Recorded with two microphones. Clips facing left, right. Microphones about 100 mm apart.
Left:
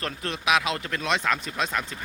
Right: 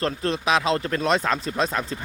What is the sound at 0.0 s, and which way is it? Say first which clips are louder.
Speech: right 6 dB; 30° right (ahead or behind).